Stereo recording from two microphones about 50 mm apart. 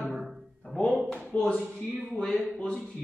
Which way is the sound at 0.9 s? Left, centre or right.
Centre.